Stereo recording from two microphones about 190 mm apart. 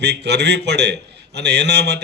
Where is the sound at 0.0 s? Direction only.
60° right (ahead or behind).